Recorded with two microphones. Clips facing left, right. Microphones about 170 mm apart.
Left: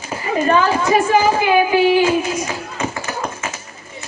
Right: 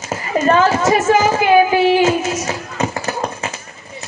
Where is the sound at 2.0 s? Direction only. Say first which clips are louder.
Right 1 dB; 40° right (ahead or behind).